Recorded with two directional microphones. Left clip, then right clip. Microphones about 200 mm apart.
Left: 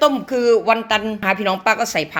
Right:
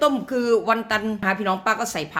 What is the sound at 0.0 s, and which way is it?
A woman's voice, 5° left (ahead or behind).